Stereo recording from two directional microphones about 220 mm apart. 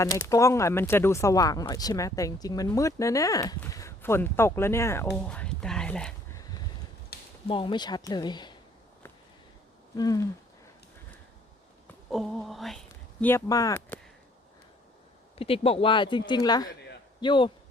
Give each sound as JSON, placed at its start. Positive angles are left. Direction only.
{"t": 0.0, "sound": "speech", "side_deg": 15}
{"t": 5.2, "sound": "music", "side_deg": 5}
{"t": 7.1, "sound": "a sound", "side_deg": 45}
{"t": 7.4, "sound": "speech", "side_deg": 25}
{"t": 10.0, "sound": "speech", "side_deg": 15}
{"t": 12.1, "sound": "speech", "side_deg": 0}
{"t": 13.2, "sound": "speech", "side_deg": 15}
{"t": 15.4, "sound": "speech", "side_deg": 25}